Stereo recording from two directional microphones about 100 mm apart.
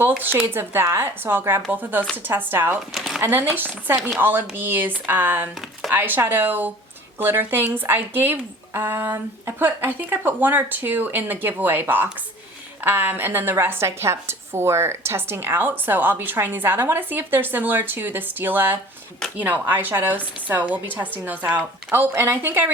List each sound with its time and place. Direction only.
0.1 s a woman's voice: 20° right (ahead or behind)
2.9 s a sound: centre (ahead or behind)
3.2 s a woman's voice: 20° right (ahead or behind)